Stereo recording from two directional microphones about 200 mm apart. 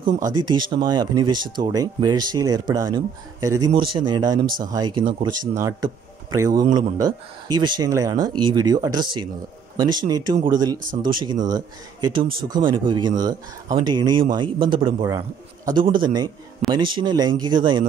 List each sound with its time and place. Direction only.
0.0 s a man's voice: 20° right (ahead or behind)